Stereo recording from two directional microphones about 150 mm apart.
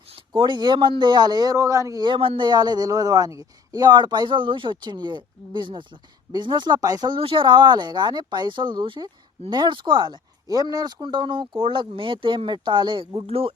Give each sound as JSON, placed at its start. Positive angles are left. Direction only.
{"t": 0.3, "sound": "a man's voice", "side_deg": -30}